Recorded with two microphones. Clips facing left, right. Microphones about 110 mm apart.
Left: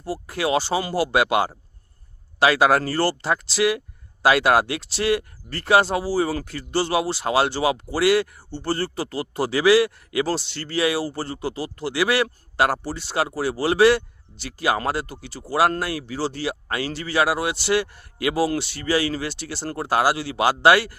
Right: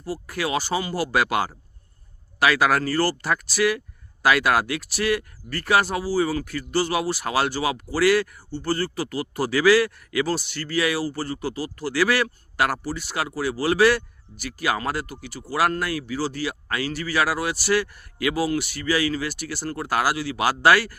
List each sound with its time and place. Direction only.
0.0 s speech: 30° left (ahead or behind)